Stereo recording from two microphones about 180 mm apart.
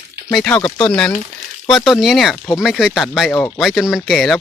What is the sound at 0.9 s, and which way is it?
Speech, 5° left (ahead or behind).